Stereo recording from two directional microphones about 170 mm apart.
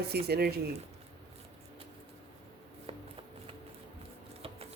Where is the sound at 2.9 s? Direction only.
30° right (ahead or behind).